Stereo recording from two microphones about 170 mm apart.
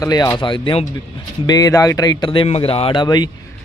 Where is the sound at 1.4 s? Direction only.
20° left (ahead or behind).